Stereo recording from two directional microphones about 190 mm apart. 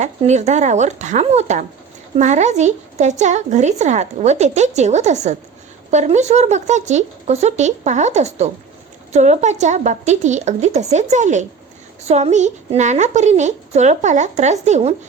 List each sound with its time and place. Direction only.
0.0 s speech: 35° right (ahead or behind)